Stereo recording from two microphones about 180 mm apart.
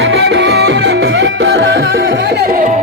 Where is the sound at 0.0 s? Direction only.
80° right.